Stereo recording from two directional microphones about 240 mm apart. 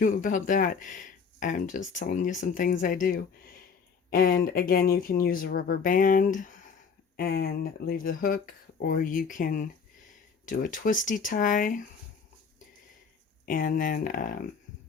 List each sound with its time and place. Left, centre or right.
0.0 s speech: left
13.4 s speech: left